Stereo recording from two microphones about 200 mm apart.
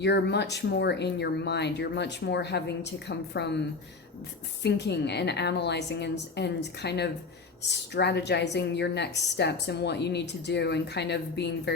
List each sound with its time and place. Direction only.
0.0 s a woman's voice: 60° left (ahead or behind)
4.6 s a woman's voice: 60° left (ahead or behind)